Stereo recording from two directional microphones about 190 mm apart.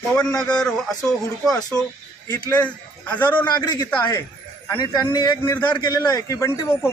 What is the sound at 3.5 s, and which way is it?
Speech, 20° left (ahead or behind).